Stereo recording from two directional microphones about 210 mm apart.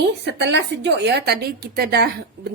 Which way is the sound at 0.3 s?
55° right (ahead or behind).